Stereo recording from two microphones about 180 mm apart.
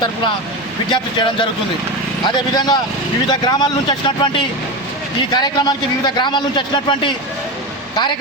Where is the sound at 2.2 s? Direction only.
25° left (ahead or behind).